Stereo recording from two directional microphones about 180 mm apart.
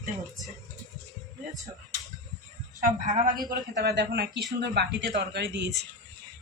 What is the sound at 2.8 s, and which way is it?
A woman's voice, 45° right (ahead or behind).